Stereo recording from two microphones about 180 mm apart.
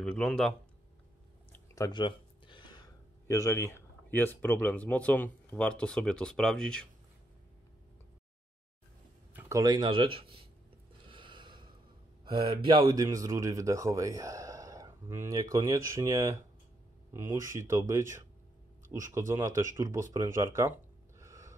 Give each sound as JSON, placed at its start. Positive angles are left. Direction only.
{"t": 0.0, "sound": "speech", "side_deg": 5}
{"t": 1.8, "sound": "a sound", "side_deg": 25}
{"t": 3.3, "sound": "speech", "side_deg": 15}
{"t": 9.3, "sound": "speech", "side_deg": -15}
{"t": 11.1, "sound": "snort", "side_deg": -25}
{"t": 12.3, "sound": "speech", "side_deg": -25}
{"t": 21.2, "sound": "gasp", "side_deg": -15}